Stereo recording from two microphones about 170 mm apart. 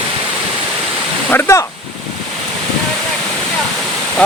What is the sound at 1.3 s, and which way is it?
Speech, 15° left (ahead or behind).